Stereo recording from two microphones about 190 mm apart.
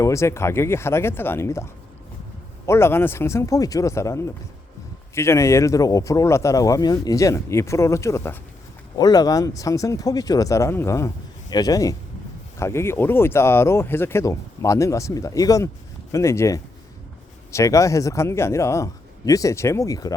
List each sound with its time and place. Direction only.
0.0 s speech: 15° left (ahead or behind)